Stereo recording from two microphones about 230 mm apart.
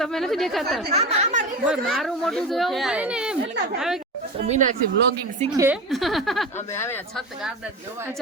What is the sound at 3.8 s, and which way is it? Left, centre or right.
Speech, centre.